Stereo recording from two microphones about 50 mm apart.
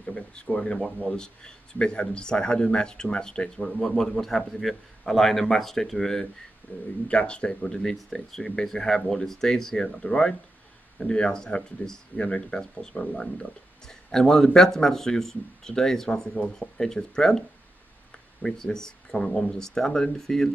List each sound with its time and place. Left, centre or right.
0.0 s speech: centre
6.7 s speech: left
7.1 s speech: left